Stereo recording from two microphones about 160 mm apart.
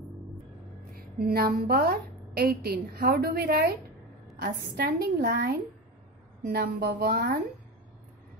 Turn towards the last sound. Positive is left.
turn(degrees=-75)  # may be behind; listen again after turning